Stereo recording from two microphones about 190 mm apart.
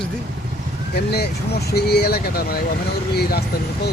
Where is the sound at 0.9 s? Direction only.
55° left (ahead or behind).